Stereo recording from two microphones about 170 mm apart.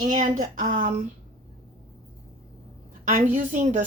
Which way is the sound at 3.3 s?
50° right (ahead or behind).